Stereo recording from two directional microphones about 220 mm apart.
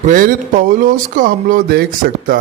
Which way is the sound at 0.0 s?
35° right (ahead or behind).